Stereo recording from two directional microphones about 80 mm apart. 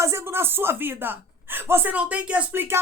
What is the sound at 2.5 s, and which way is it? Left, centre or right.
Speech, right.